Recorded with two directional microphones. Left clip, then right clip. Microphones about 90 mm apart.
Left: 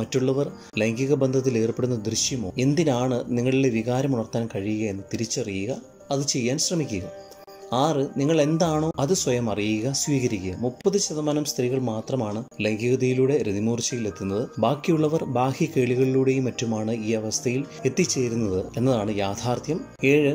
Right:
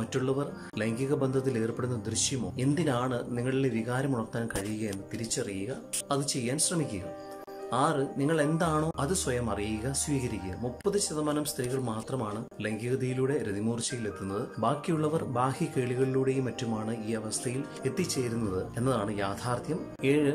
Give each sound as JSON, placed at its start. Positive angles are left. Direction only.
{"t": 0.1, "sound": "speech", "side_deg": 30}